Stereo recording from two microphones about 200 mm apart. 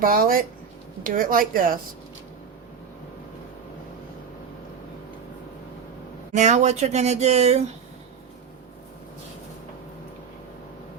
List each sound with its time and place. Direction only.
0.0 s a woman's voice: 45° right (ahead or behind)
6.3 s speech: 35° right (ahead or behind)